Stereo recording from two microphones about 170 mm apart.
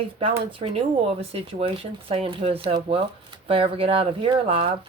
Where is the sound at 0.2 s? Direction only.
30° right (ahead or behind).